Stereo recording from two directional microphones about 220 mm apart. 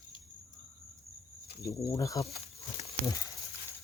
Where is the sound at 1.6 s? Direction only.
15° left (ahead or behind).